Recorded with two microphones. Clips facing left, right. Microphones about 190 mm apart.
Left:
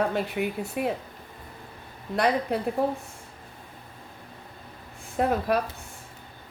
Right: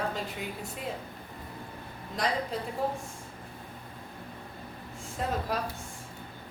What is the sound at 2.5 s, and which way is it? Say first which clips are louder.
Speech: left 7 dB; 65° left (ahead or behind).